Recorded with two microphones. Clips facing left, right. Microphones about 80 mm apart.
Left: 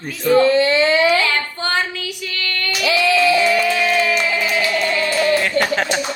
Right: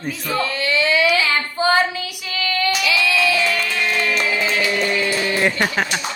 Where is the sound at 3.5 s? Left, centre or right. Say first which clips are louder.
Left 5 dB; centre.